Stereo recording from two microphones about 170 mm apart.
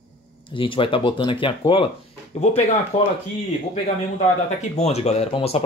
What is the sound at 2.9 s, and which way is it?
Speech, 45° left (ahead or behind).